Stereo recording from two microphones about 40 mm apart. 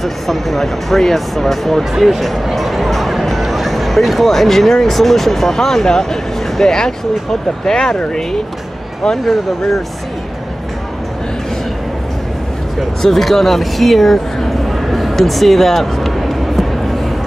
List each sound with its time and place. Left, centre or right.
0.0 s speech: centre
9.2 s speech: centre
13.0 s speech: centre